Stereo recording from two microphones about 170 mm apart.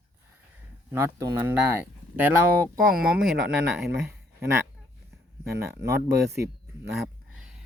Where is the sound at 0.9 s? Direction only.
15° right (ahead or behind).